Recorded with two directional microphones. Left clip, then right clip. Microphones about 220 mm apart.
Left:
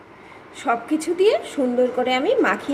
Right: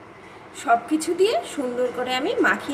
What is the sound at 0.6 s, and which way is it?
A woman's voice, 20° left (ahead or behind).